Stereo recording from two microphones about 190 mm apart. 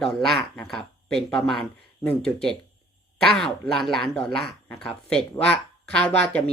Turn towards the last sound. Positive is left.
turn(degrees=5)  # may be behind; listen again after turning